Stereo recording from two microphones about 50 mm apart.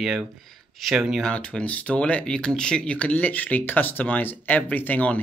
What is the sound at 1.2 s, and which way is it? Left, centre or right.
Speech, centre.